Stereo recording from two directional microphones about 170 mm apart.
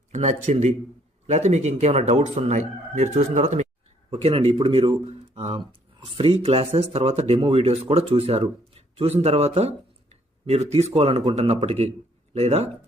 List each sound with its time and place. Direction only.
0.1 s a man's voice: 45° right (ahead or behind)